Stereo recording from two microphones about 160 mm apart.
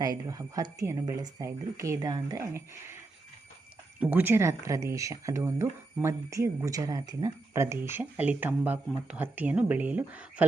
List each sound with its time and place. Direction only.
0.0 s speech: 20° right (ahead or behind)
4.0 s speech: 10° right (ahead or behind)